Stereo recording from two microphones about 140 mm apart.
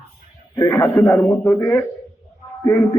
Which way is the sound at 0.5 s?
15° left (ahead or behind).